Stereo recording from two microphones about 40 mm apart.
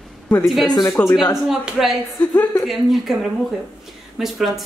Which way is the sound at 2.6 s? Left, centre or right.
Centre.